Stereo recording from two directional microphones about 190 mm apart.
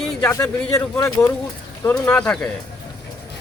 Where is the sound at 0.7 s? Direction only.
15° left (ahead or behind).